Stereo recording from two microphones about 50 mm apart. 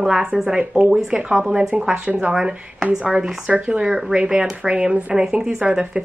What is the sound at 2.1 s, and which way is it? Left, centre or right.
Speech, right.